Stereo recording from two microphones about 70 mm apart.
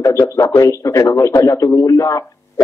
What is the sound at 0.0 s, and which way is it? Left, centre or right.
A man's voice, left.